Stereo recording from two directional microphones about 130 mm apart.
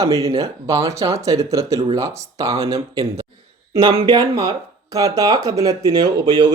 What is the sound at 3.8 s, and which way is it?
Speech, 45° right (ahead or behind).